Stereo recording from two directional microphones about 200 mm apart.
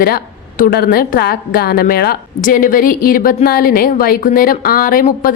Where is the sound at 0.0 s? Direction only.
45° left (ahead or behind).